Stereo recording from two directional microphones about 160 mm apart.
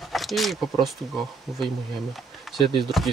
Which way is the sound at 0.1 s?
Centre (ahead or behind).